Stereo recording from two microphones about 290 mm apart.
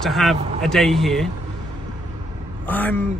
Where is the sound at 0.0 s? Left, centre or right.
Centre.